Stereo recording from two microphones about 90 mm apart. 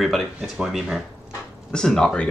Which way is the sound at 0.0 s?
Centre (ahead or behind).